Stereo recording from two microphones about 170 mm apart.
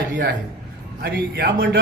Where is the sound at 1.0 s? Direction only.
65° right (ahead or behind).